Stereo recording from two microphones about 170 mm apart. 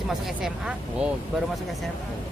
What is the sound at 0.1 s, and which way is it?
Speech, 5° right (ahead or behind).